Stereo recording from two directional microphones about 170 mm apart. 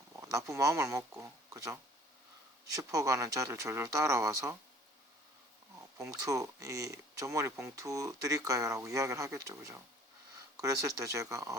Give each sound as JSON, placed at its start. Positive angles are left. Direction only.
{"t": 0.2, "sound": "a sound", "side_deg": -20}
{"t": 0.5, "sound": "speech", "side_deg": -20}
{"t": 6.0, "sound": "speech", "side_deg": -20}